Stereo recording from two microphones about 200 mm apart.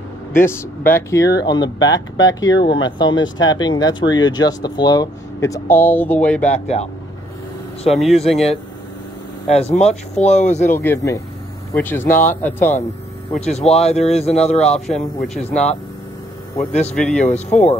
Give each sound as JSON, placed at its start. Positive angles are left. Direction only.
{"t": 0.3, "sound": "speech", "side_deg": 10}
{"t": 6.5, "sound": "speech", "side_deg": 30}
{"t": 7.9, "sound": "speech", "side_deg": 0}
{"t": 9.5, "sound": "speech", "side_deg": 30}
{"t": 10.7, "sound": "speech", "side_deg": 10}
{"t": 13.6, "sound": "speech", "side_deg": 30}
{"t": 16.9, "sound": "speech", "side_deg": 0}
{"t": 17.2, "sound": "speech", "side_deg": 35}